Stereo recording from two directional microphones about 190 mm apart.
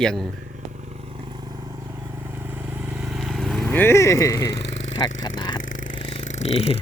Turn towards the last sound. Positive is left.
turn(degrees=30)  # may be behind; listen again after turning